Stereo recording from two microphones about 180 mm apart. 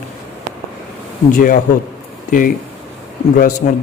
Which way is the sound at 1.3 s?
50° left (ahead or behind).